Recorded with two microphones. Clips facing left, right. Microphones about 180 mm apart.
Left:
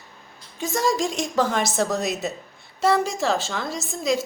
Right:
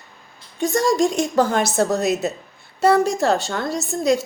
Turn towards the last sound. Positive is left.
turn(degrees=0)  # may be behind; listen again after turning